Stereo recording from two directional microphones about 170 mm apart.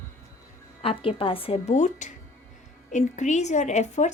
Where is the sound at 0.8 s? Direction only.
35° left (ahead or behind).